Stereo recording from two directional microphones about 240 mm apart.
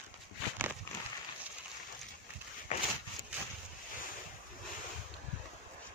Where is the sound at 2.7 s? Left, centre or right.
Left.